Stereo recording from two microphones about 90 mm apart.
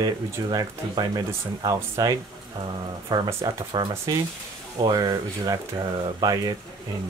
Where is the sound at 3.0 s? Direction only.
55° right (ahead or behind).